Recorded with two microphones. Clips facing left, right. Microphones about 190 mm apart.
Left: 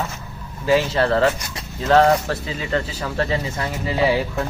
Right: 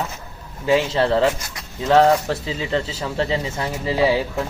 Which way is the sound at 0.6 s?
20° right (ahead or behind).